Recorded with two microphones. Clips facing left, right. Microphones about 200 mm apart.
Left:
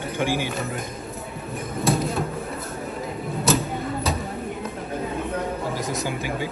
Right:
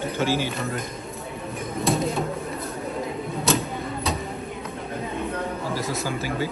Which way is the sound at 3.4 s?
Centre (ahead or behind).